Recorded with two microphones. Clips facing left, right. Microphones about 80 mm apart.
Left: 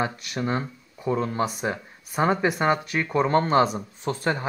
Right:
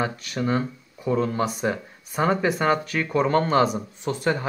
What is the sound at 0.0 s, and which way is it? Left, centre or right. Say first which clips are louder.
Speech: right 1 dB; left.